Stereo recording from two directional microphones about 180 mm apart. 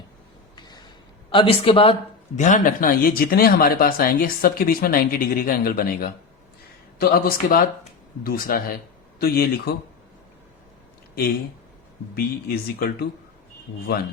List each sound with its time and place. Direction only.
0.5 s a sound: 25° left (ahead or behind)
1.3 s speech: 30° left (ahead or behind); by 9.7 s 60° left (ahead or behind)
12.1 s speech: 60° left (ahead or behind)